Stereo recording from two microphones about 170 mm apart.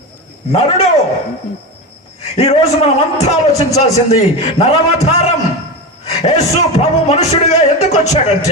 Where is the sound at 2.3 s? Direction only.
40° left (ahead or behind).